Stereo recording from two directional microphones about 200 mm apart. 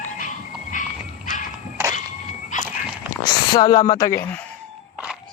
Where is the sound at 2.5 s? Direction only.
40° left (ahead or behind).